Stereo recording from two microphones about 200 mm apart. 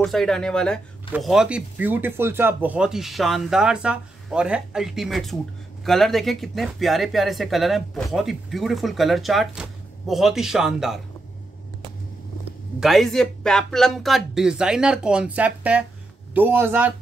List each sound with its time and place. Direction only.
0.0 s speech: centre (ahead or behind)
12.8 s speech: centre (ahead or behind)